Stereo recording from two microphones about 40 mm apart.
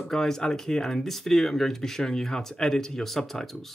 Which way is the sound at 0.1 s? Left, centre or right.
Centre.